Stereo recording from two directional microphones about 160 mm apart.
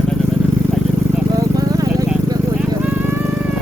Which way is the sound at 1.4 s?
20° right (ahead or behind).